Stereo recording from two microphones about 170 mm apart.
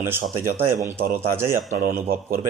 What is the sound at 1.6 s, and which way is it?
Speech, 55° right (ahead or behind).